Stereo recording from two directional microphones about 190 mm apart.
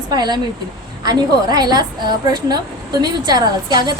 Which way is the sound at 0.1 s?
20° right (ahead or behind).